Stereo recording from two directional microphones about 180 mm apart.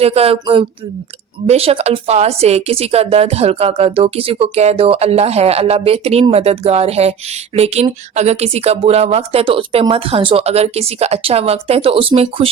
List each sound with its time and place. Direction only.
0.0 s speech: 35° right (ahead or behind)